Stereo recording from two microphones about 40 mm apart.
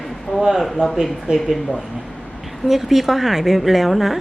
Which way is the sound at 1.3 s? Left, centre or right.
Right.